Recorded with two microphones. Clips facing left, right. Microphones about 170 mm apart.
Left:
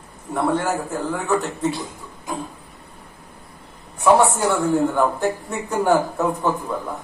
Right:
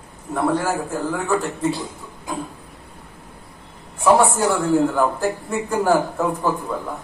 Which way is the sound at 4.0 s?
Centre (ahead or behind).